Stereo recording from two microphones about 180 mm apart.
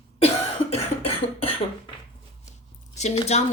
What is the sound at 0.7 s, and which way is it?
Cough, 35° left (ahead or behind).